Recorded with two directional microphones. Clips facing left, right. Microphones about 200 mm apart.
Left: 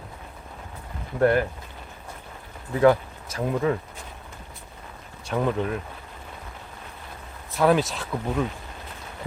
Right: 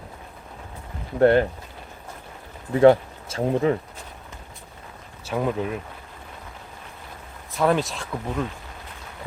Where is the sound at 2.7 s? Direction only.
25° right (ahead or behind).